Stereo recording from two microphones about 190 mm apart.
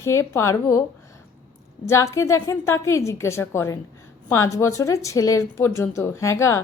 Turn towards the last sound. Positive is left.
turn(degrees=15)  # may be behind; listen again after turning